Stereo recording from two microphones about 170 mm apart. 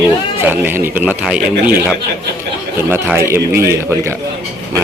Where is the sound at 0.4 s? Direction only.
10° right (ahead or behind).